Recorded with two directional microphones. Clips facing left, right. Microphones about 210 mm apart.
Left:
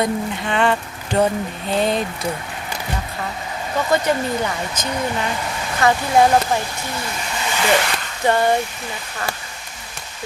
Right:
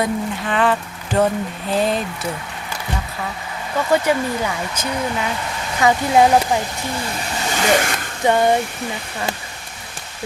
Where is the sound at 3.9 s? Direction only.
10° right (ahead or behind).